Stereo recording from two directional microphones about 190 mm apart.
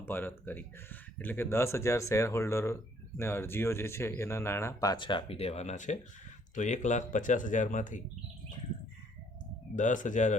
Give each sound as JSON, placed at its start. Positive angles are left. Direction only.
{"t": 0.0, "sound": "speech", "side_deg": 10}
{"t": 9.7, "sound": "speech", "side_deg": 40}